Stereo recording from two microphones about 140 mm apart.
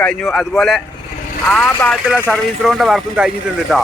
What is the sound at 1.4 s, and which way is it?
Speech, 10° left (ahead or behind).